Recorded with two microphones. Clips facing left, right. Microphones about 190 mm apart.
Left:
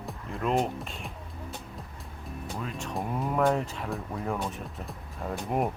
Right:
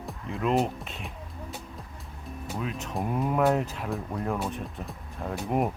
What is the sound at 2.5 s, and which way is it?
Speech, 5° right (ahead or behind).